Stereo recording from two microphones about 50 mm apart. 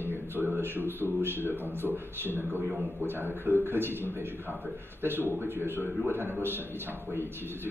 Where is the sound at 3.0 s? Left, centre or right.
Right.